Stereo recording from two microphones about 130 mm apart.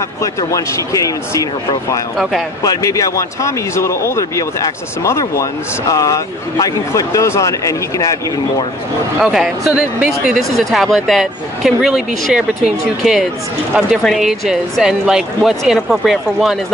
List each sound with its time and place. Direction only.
0.2 s speech: 25° left (ahead or behind)
2.6 s speech: 25° left (ahead or behind)
9.2 s speech: 5° right (ahead or behind)